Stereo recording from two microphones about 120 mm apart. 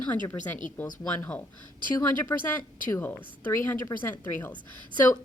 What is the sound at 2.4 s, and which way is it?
A woman's voice, 15° left (ahead or behind).